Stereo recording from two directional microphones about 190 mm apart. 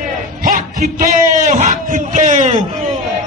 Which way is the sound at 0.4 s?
45° right (ahead or behind).